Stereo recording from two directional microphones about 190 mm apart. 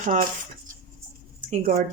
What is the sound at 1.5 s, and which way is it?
Speech, 45° right (ahead or behind).